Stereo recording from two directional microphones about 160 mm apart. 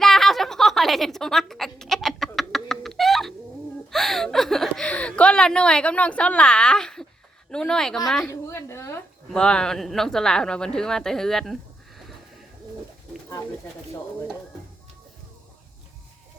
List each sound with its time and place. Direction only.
0.0 s a sound: centre (ahead or behind)
7.5 s speech: 5° left (ahead or behind)
8.3 s a woman's voice: 15° left (ahead or behind)
9.3 s speech: 5° left (ahead or behind)